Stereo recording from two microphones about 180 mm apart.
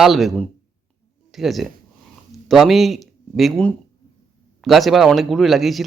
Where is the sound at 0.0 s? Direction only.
Centre (ahead or behind).